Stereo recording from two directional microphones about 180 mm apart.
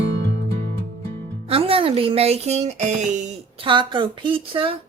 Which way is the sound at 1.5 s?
30° right (ahead or behind).